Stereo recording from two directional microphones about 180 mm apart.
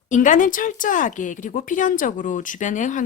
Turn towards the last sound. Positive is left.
turn(degrees=45)  # may be behind; listen again after turning